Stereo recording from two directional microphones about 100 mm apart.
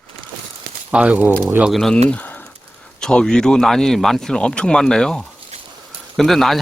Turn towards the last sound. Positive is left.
turn(degrees=0)  # may be behind; listen again after turning